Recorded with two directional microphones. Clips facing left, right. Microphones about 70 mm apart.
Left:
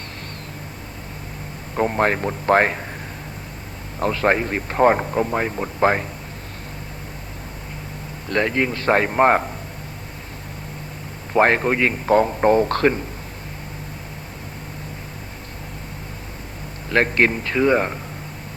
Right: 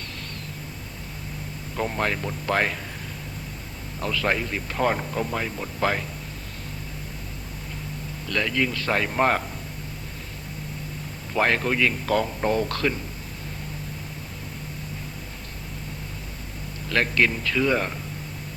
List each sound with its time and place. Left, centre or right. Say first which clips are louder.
1.7 s a man's voice: left 7 dB; left
4.0 s a man's voice: left 6 dB; left
8.3 s a man's voice: left 5 dB; left
11.3 s a man's voice: left 5 dB; left
16.9 s a man's voice: left 4 dB; left